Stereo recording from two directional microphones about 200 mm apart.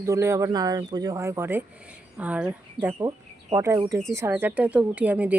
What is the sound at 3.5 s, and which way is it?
Speech, 15° right (ahead or behind).